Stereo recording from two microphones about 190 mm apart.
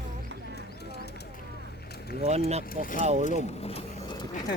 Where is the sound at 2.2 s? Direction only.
35° right (ahead or behind).